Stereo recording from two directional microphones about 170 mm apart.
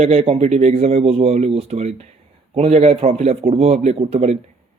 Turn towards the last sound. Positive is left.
turn(degrees=-40)  # may be behind; listen again after turning